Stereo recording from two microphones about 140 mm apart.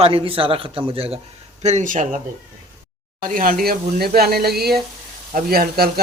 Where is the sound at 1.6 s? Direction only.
60° right (ahead or behind).